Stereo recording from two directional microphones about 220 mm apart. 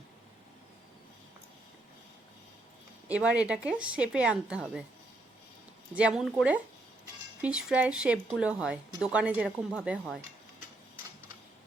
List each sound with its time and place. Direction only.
3.1 s speech: 5° right (ahead or behind)
5.9 s speech: 5° right (ahead or behind)